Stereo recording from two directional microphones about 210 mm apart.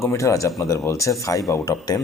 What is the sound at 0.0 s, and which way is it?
A man's voice, 15° left (ahead or behind).